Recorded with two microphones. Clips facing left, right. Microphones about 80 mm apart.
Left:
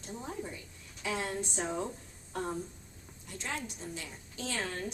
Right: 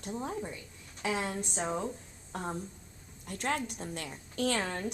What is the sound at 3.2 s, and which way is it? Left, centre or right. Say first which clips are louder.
A woman's voice: right 6 dB; right.